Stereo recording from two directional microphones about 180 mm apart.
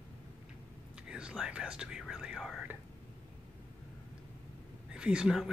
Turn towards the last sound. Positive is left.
turn(degrees=-5)  # may be behind; listen again after turning